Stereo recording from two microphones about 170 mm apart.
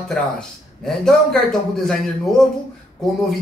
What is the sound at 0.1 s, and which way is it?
A man's voice, 5° left (ahead or behind).